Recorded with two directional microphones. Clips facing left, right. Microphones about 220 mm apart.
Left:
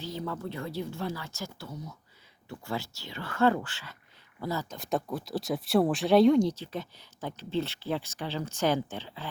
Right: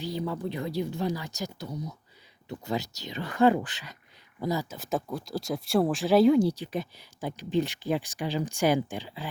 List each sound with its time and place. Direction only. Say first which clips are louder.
0.0 s speech: right 4 dB; 15° right (ahead or behind)
4.8 s speech: even; centre (ahead or behind)